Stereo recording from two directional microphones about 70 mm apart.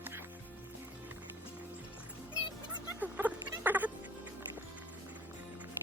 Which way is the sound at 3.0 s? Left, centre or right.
Right.